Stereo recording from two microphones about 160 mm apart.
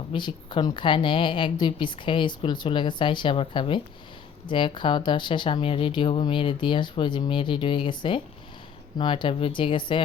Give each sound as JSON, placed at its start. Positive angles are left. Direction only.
{"t": 0.1, "sound": "speech", "side_deg": 30}